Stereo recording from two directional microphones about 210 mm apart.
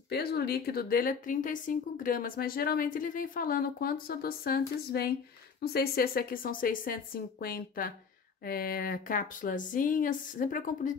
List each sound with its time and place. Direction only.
0.1 s a woman's voice: 50° left (ahead or behind)